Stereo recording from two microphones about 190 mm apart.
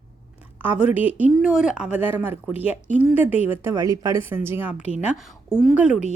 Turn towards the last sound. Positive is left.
turn(degrees=35)  # may be behind; listen again after turning